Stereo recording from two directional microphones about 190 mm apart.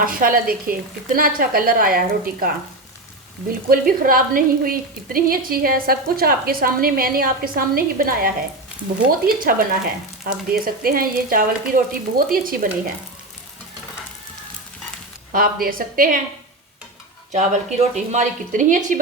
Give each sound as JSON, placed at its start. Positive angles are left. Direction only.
{"t": 0.0, "sound": "a woman's voice", "side_deg": -45}
{"t": 3.7, "sound": "a woman's voice", "side_deg": -50}
{"t": 15.3, "sound": "a woman's voice", "side_deg": -50}
{"t": 17.3, "sound": "a woman's voice", "side_deg": -40}